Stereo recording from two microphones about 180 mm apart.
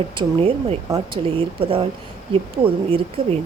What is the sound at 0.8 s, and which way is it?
Speech, 20° right (ahead or behind).